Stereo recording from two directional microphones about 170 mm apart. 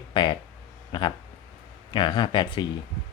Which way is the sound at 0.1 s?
30° left (ahead or behind).